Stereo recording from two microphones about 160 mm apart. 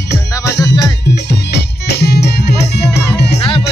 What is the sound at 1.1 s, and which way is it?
Music, 90° left.